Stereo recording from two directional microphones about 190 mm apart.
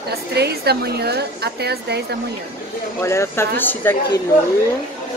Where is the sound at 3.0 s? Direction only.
15° left (ahead or behind).